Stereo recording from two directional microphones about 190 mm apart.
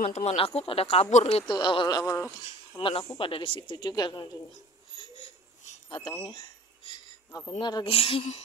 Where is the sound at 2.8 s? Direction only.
25° left (ahead or behind).